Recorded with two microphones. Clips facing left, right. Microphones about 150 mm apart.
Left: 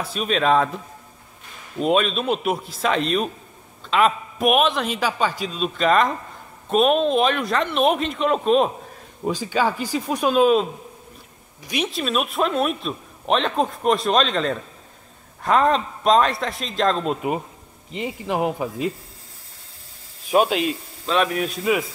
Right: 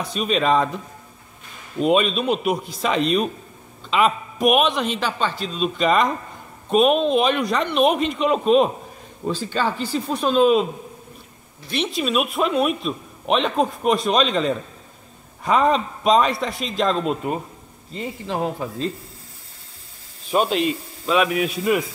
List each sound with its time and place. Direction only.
0.0 s speech: centre (ahead or behind)
1.8 s speech: centre (ahead or behind)
9.2 s speech: 10° left (ahead or behind)
17.9 s speech: 15° left (ahead or behind)
20.2 s speech: 5° left (ahead or behind)
21.0 s a man's voice: 10° right (ahead or behind)